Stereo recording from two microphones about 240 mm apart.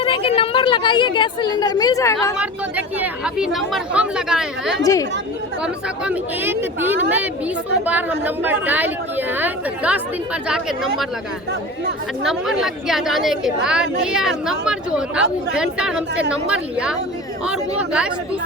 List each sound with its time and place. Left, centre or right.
0.0 s a woman's voice: left
2.4 s a woman's voice: centre
4.8 s speech: centre
5.6 s a woman's voice: centre
12.2 s a woman's voice: centre